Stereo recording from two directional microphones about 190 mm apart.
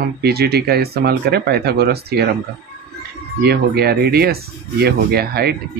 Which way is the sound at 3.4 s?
55° right (ahead or behind).